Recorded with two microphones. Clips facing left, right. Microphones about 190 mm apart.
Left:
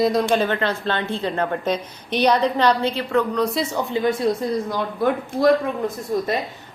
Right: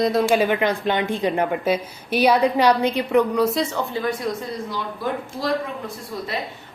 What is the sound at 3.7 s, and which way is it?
Speech, 20° left (ahead or behind).